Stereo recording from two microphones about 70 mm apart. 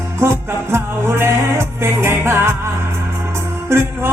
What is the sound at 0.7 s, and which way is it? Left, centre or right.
Music, right.